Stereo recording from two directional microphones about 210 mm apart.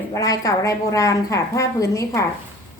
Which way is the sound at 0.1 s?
15° left (ahead or behind).